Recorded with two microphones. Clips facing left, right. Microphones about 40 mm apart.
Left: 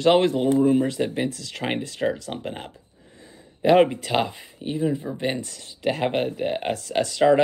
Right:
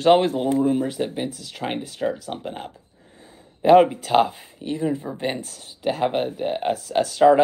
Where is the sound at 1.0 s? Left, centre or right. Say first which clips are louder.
Left 1 dB; centre.